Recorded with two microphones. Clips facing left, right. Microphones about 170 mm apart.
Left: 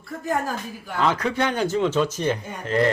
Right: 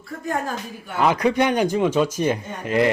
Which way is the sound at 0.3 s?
Centre (ahead or behind).